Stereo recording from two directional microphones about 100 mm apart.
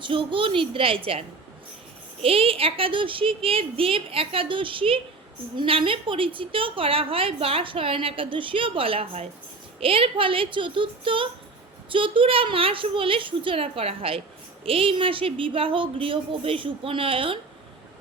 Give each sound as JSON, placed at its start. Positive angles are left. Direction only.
{"t": 0.0, "sound": "a woman's voice", "side_deg": -60}
{"t": 2.2, "sound": "a woman's voice", "side_deg": -70}